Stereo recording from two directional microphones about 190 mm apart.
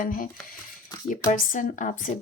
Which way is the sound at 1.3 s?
45° left (ahead or behind).